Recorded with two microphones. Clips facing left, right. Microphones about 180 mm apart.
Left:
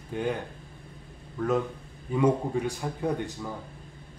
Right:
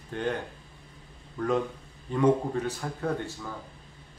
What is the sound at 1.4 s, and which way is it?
A man's voice, 5° left (ahead or behind).